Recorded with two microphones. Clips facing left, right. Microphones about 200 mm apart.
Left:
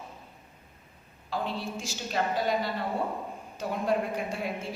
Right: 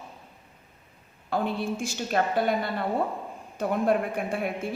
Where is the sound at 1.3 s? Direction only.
55° right (ahead or behind).